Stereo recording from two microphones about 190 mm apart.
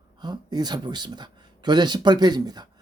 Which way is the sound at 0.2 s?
20° right (ahead or behind).